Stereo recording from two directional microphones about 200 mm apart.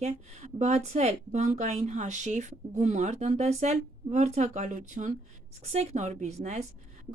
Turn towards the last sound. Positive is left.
turn(degrees=-35)  # may be behind; listen again after turning